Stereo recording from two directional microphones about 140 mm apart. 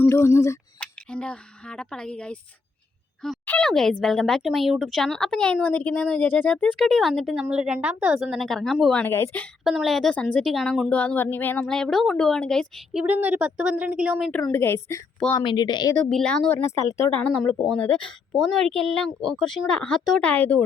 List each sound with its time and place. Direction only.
0.0 s speech: 20° left (ahead or behind)
0.8 s speech: 10° left (ahead or behind)
9.6 s speech: centre (ahead or behind)
14.3 s speech: 5° left (ahead or behind)
14.5 s a woman's voice: 15° left (ahead or behind)
15.4 s speech: 30° left (ahead or behind)
16.0 s speech: 5° left (ahead or behind)